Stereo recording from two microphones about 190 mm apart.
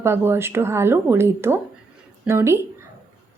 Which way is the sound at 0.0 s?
10° right (ahead or behind).